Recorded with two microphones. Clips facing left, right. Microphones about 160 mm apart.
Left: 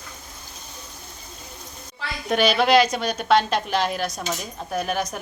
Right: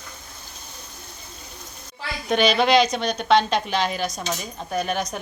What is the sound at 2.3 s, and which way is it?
A woman's voice, centre (ahead or behind).